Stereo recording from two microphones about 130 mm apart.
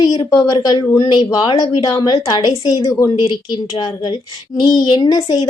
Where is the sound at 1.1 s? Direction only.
35° left (ahead or behind).